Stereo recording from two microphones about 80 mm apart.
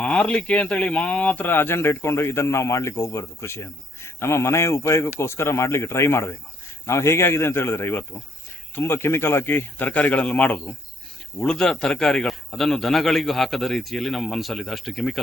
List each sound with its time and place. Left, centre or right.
0.0 s a man's voice: centre